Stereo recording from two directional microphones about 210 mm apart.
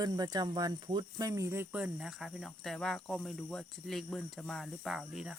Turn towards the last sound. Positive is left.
turn(degrees=0)  # may be behind; listen again after turning